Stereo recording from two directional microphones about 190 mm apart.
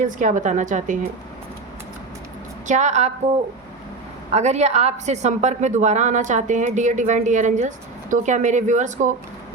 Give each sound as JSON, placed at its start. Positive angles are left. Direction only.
{"t": 0.0, "sound": "a woman's voice", "side_deg": -40}
{"t": 2.6, "sound": "a woman's voice", "side_deg": -40}
{"t": 4.3, "sound": "a woman's voice", "side_deg": -35}